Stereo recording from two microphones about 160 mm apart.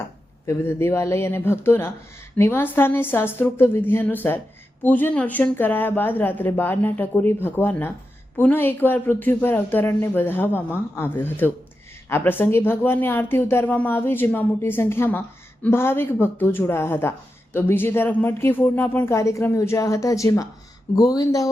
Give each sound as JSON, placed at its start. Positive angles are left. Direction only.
{"t": 0.4, "sound": "speech", "side_deg": 15}